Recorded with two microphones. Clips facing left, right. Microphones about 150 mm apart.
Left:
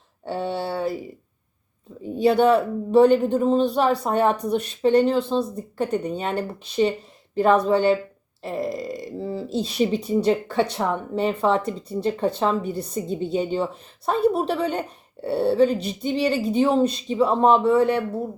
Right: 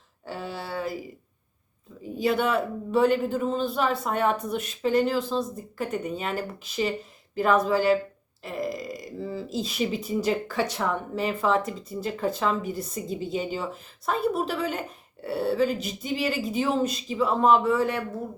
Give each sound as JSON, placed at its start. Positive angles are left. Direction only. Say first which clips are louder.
{"t": 0.3, "sound": "speech", "louder": "left 8 dB", "side_deg": 30}
{"t": 2.1, "sound": "speech", "louder": "left 7 dB", "side_deg": 30}